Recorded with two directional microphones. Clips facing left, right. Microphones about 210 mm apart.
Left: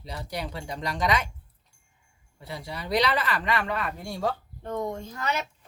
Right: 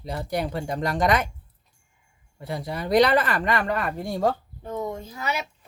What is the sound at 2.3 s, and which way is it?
Speech, 50° right (ahead or behind).